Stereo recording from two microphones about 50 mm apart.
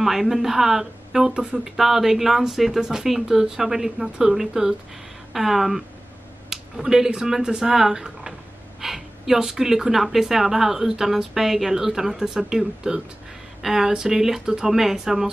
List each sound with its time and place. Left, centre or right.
0.0 s speech: centre
6.5 s a sound: centre
7.2 s speech: centre